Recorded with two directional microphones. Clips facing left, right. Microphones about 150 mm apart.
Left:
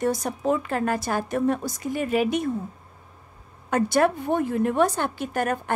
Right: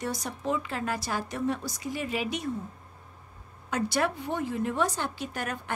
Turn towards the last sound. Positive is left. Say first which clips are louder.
# left 8 dB
turn(degrees=50)  # may be behind; listen again after turning